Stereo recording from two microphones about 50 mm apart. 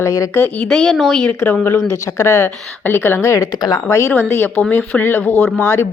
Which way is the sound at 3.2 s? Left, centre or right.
Left.